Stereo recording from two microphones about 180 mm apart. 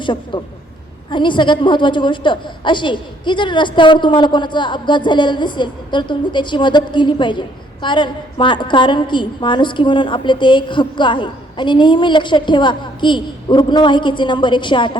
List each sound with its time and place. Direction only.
0.0 s a woman's voice: 25° left (ahead or behind)